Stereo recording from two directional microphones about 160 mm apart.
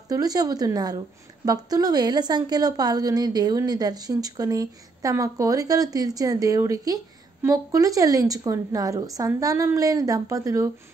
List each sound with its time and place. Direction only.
0.1 s a woman's voice: 25° right (ahead or behind)